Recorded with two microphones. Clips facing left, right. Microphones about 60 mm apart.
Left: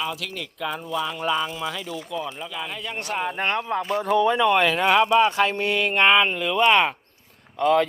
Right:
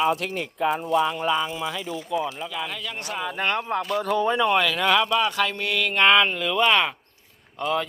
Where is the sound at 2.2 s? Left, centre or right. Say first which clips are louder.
Right 2 dB; centre.